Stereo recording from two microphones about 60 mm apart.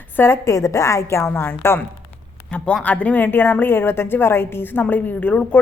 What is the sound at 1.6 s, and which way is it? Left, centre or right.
Speech, left.